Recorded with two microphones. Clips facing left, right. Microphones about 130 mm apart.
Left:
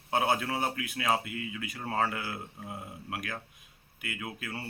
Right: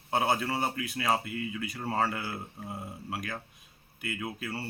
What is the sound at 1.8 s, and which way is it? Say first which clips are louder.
Speech: right 1 dB; 5° right (ahead or behind).